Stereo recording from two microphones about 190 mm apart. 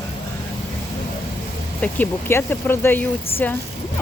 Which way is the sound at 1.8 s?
10° left (ahead or behind).